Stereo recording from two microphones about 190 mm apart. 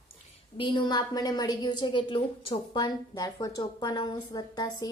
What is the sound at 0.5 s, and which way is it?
A woman's voice, 25° left (ahead or behind).